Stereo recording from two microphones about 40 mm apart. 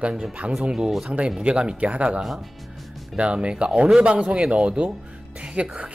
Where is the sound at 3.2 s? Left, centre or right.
Right.